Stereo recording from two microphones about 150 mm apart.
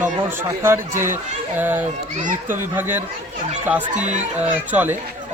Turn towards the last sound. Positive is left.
turn(degrees=-10)  # may be behind; listen again after turning